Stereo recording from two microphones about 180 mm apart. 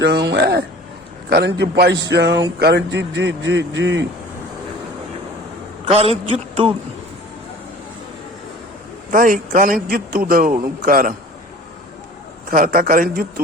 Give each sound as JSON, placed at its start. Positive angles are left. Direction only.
{"t": 0.0, "sound": "a man's voice", "side_deg": -65}
{"t": 5.8, "sound": "a man's voice", "side_deg": -35}
{"t": 9.0, "sound": "speech", "side_deg": -50}
{"t": 12.5, "sound": "speech", "side_deg": -50}